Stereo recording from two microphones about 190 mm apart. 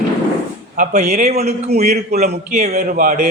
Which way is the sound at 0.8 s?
35° right (ahead or behind).